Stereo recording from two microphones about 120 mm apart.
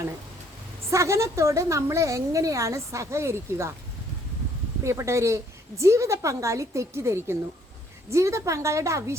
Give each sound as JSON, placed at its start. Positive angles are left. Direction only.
{"t": 0.9, "sound": "a woman's voice", "side_deg": -25}
{"t": 4.8, "sound": "a woman's voice", "side_deg": -25}